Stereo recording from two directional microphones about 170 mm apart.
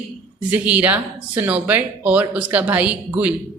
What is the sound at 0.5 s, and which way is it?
A woman's voice, 10° right (ahead or behind).